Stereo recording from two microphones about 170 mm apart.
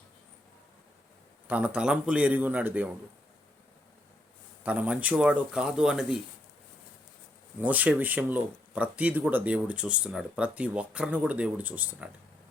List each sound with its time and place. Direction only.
1.5 s speech: 10° right (ahead or behind)
4.6 s speech: 10° right (ahead or behind)
7.6 s speech: 10° right (ahead or behind)